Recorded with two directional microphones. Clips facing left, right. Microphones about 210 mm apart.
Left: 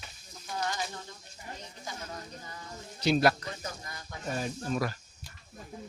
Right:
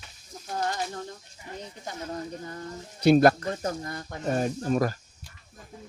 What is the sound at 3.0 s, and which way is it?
Speech, 50° right (ahead or behind).